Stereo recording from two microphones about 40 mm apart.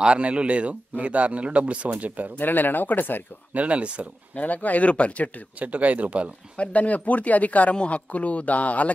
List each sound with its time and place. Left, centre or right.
0.0 s a man's voice: right
2.3 s speech: left
3.5 s a man's voice: right
4.4 s speech: left
5.6 s a man's voice: right
6.5 s speech: left